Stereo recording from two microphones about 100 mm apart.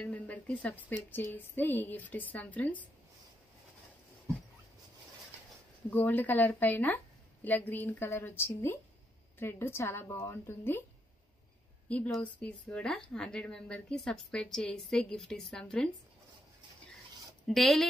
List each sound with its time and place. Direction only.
0.0 s speech: 15° left (ahead or behind)
5.9 s a woman's voice: 20° left (ahead or behind)
11.9 s speech: 10° left (ahead or behind)
17.5 s speech: centre (ahead or behind)